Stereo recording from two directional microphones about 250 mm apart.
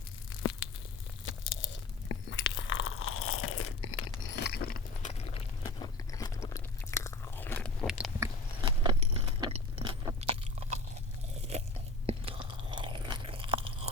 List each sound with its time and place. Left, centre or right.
1.2 s crunch: left; by 7.9 s centre
8.2 s a sound: centre
10.2 s crunch: right
12.0 s chewing: right